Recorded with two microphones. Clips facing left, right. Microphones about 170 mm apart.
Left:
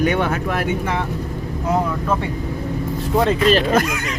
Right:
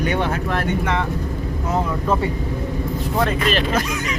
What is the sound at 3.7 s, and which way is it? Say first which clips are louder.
Speech: left 4 dB; 55° left (ahead or behind).